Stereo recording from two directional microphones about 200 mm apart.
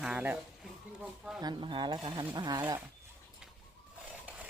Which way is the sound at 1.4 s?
20° right (ahead or behind).